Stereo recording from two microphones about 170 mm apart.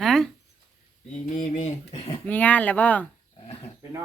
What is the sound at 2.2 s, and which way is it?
Speech, 10° left (ahead or behind).